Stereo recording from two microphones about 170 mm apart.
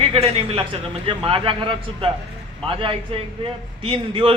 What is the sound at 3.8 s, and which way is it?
Speech, 30° right (ahead or behind).